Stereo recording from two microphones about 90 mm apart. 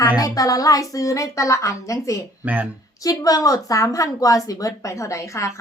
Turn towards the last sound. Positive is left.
turn(degrees=35)  # may be behind; listen again after turning